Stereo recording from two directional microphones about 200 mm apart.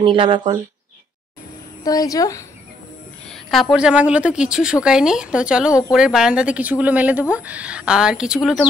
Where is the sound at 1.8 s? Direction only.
15° left (ahead or behind).